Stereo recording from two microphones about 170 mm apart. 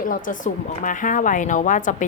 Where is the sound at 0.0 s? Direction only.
50° left (ahead or behind).